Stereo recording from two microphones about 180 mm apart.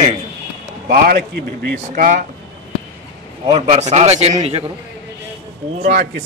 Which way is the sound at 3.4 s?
35° right (ahead or behind).